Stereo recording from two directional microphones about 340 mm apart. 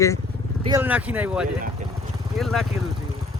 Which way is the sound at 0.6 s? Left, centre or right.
Centre.